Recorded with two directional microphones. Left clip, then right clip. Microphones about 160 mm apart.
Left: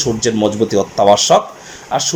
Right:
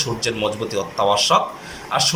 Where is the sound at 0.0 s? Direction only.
45° left (ahead or behind).